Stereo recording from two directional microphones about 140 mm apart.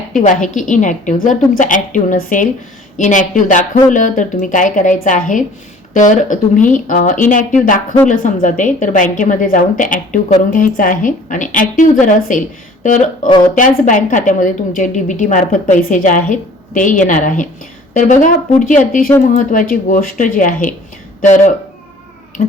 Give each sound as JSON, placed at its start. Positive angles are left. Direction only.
{"t": 0.2, "sound": "a woman's voice", "side_deg": 65}
{"t": 21.2, "sound": "a woman's voice", "side_deg": 60}